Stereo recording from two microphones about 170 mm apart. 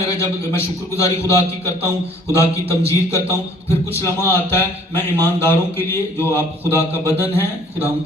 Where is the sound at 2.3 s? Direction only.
15° left (ahead or behind).